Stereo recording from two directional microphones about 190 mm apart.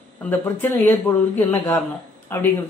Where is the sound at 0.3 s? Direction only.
10° left (ahead or behind).